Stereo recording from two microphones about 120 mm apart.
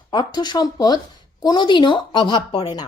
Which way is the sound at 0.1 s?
40° left (ahead or behind).